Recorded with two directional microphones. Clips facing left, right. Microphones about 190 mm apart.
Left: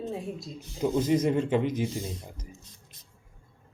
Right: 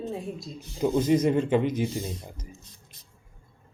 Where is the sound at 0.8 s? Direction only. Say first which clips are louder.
Right 2 dB; 65° right (ahead or behind).